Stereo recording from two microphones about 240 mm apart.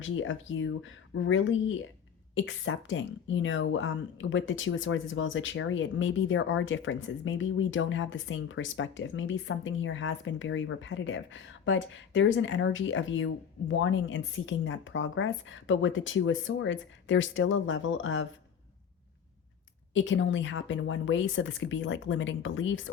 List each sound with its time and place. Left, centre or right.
0.0 s speech: left
19.9 s speech: left